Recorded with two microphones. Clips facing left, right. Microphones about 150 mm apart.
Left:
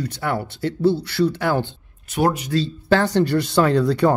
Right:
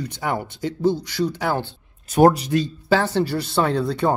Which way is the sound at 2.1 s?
45° right (ahead or behind).